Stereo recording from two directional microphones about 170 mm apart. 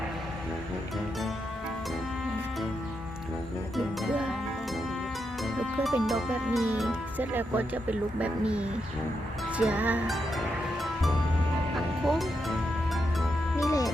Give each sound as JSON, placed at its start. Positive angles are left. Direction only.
{"t": 3.8, "sound": "music", "side_deg": -5}
{"t": 5.4, "sound": "speech", "side_deg": 0}
{"t": 12.0, "sound": "music", "side_deg": 0}
{"t": 13.6, "sound": "music", "side_deg": 20}